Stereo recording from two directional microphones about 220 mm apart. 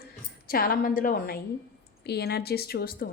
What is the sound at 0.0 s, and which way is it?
A woman's voice, 40° left (ahead or behind).